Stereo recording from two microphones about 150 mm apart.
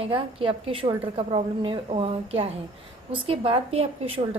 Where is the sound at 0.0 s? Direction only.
40° right (ahead or behind).